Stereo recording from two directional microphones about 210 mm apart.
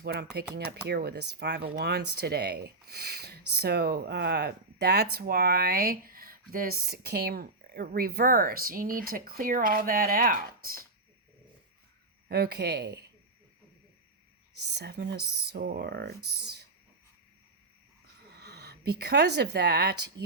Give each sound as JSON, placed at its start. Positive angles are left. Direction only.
{"t": 0.0, "sound": "speech", "side_deg": -50}
{"t": 12.3, "sound": "speech", "side_deg": -50}
{"t": 14.6, "sound": "speech", "side_deg": -50}
{"t": 18.3, "sound": "a sound", "side_deg": -50}
{"t": 19.4, "sound": "speech", "side_deg": -50}